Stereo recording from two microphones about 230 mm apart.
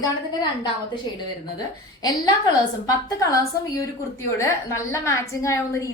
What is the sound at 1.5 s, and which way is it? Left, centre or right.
A woman's voice, centre.